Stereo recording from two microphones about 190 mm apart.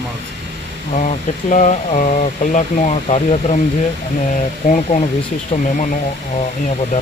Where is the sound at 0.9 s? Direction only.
40° left (ahead or behind).